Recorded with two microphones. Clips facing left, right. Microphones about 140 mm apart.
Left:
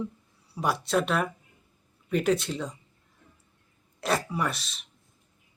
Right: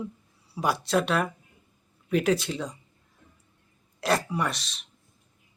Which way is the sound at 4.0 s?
Centre (ahead or behind).